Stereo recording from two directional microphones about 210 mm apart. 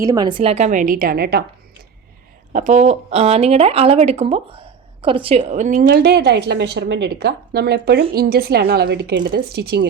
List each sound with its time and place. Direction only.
0.0 s speech: 15° right (ahead or behind); by 1.5 s 50° right (ahead or behind)
2.5 s a woman's voice: 35° right (ahead or behind); by 9.8 s 50° right (ahead or behind)